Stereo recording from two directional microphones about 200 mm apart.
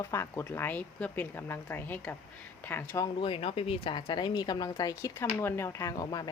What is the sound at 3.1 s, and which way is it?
Speech, 25° left (ahead or behind).